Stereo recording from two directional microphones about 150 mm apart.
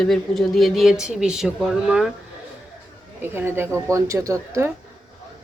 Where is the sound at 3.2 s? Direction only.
15° right (ahead or behind).